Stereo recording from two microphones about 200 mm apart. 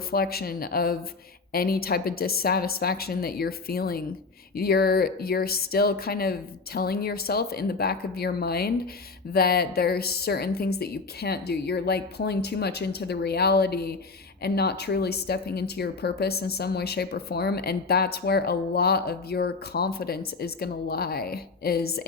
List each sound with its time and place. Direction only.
0.1 s speech: 50° left (ahead or behind)